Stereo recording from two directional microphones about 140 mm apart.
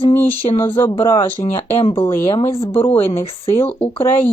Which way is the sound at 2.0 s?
20° left (ahead or behind).